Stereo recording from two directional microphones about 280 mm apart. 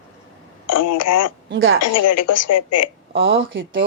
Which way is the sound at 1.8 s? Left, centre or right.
Left.